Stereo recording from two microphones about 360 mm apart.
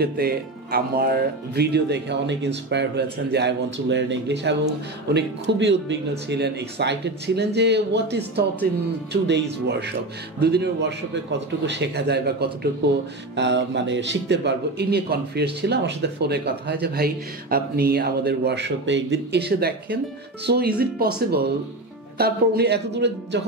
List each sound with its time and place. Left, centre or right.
0.0 s a man's voice: right